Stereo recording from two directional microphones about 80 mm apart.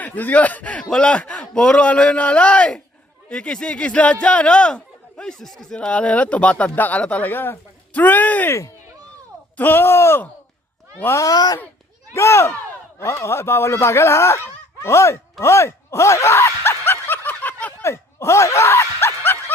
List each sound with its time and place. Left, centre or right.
0.0 s speech: left
9.6 s speech: left
12.1 s speech: left; by 17.8 s centre
17.8 s snicker: left